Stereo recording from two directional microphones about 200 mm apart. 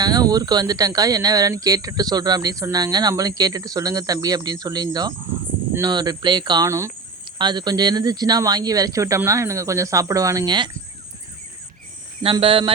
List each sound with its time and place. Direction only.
0.0 s speech: 20° right (ahead or behind)
12.2 s speech: 25° right (ahead or behind)